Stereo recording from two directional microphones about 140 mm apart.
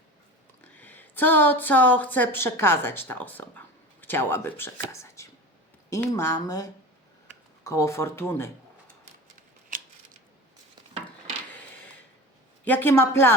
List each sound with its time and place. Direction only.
0.6 s a woman's voice: 10° left (ahead or behind)
9.7 s scissors: 80° right
11.5 s a sound: 10° left (ahead or behind)
12.6 s speech: 15° left (ahead or behind)